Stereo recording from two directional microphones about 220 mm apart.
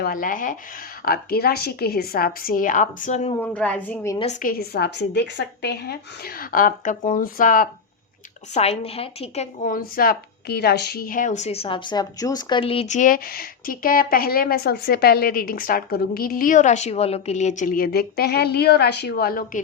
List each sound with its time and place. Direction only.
0.0 s a woman's voice: 40° left (ahead or behind)
3.4 s a woman's voice: 5° left (ahead or behind)
4.2 s a woman's voice: 35° left (ahead or behind)